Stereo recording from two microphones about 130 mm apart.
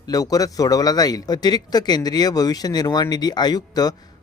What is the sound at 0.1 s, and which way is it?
Speech, 30° left (ahead or behind).